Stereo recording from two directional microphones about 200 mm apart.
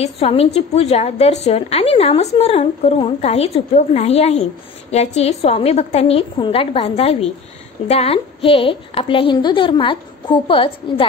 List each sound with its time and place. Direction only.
0.0 s a woman's voice: 30° left (ahead or behind)